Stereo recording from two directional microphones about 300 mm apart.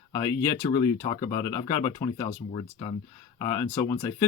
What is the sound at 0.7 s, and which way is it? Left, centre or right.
Speech, centre.